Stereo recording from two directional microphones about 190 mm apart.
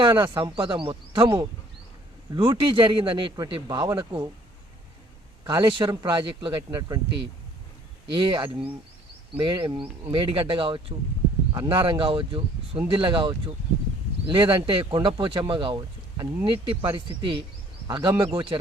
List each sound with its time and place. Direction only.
0.0 s speech: 25° right (ahead or behind)
5.5 s speech: 25° right (ahead or behind)
8.1 s speech: 25° right (ahead or behind)
14.3 s speech: 25° right (ahead or behind)